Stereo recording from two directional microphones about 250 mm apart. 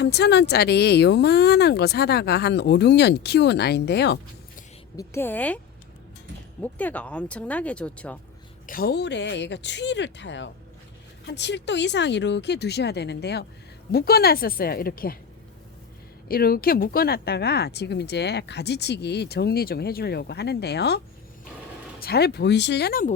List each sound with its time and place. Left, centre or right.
0.0 s speech: left
4.9 s a woman's voice: centre
6.6 s speech: centre
8.6 s speech: left
16.3 s speech: left
22.0 s speech: left